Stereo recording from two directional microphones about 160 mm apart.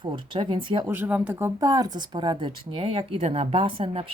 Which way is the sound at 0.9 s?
10° right (ahead or behind).